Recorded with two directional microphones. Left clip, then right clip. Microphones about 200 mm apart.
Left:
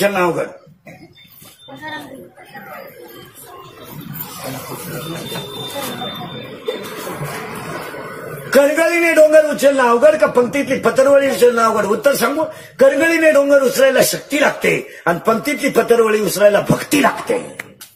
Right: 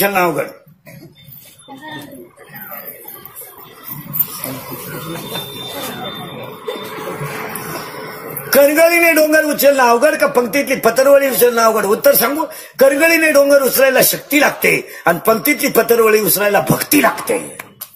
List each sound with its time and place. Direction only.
0.0 s a man's voice: 30° right (ahead or behind)
8.5 s a man's voice: 30° right (ahead or behind)